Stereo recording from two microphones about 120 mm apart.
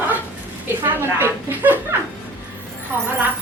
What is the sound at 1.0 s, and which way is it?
Speech, 20° right (ahead or behind).